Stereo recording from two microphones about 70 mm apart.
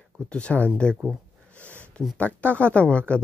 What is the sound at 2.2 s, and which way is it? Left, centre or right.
Speech, left.